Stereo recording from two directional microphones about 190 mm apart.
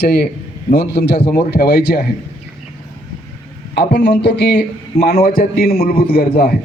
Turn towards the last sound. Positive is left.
turn(degrees=50)  # may be behind; listen again after turning